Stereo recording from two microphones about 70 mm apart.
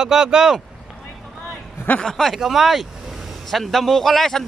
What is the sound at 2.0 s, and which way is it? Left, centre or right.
Speech, centre.